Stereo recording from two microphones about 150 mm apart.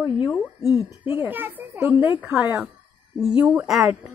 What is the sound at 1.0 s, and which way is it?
A woman's voice, 15° right (ahead or behind).